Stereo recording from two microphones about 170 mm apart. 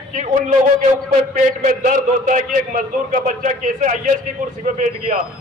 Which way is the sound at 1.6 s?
50° right (ahead or behind).